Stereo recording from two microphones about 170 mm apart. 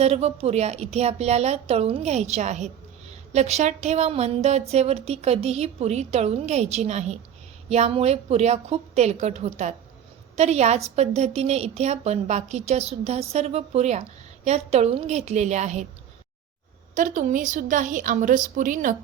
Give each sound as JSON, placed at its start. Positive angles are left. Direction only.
{"t": 0.0, "sound": "a woman's voice", "side_deg": -40}
{"t": 16.9, "sound": "a woman's voice", "side_deg": -50}